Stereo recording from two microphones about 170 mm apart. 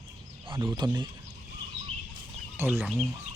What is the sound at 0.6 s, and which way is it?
Speech, 25° right (ahead or behind).